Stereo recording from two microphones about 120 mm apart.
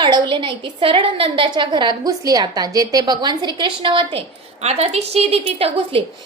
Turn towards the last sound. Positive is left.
turn(degrees=-50)  # may be behind; listen again after turning